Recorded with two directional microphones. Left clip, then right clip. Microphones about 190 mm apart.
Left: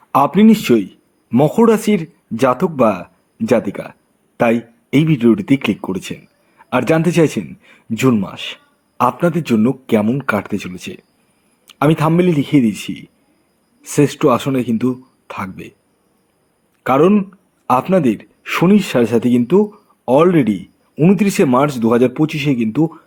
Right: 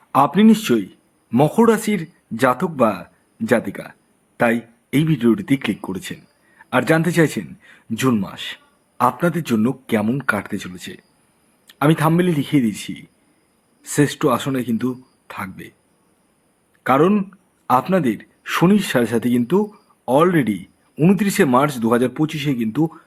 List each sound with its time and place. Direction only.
0.1 s a man's voice: 15° left (ahead or behind)
16.8 s speech: 15° left (ahead or behind)